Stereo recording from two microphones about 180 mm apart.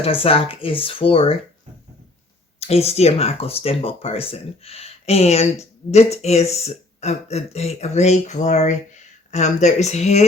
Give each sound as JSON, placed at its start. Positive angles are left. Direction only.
{"t": 0.0, "sound": "speech", "side_deg": 30}
{"t": 2.6, "sound": "speech", "side_deg": 35}